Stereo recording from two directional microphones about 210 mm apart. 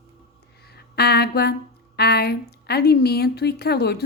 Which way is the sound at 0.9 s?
50° left (ahead or behind).